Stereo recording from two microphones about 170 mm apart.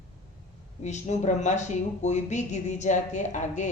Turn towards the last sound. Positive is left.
turn(degrees=45)  # may be behind; listen again after turning